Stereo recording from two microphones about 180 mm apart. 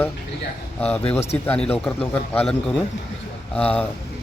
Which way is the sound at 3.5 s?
5° left (ahead or behind).